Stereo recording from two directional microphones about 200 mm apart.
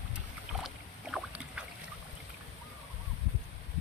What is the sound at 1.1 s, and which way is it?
Boat, 5° right (ahead or behind).